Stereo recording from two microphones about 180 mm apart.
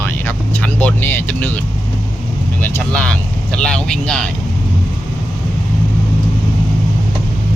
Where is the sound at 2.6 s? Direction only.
10° left (ahead or behind).